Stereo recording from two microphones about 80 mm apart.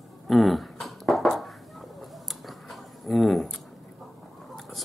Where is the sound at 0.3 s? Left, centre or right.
Centre.